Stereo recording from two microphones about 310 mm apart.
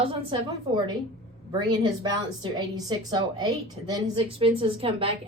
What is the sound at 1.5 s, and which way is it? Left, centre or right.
A woman's voice, centre.